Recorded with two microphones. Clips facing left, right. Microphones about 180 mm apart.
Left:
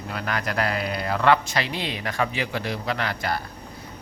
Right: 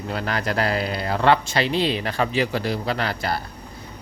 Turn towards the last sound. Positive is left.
turn(degrees=-30)  # may be behind; listen again after turning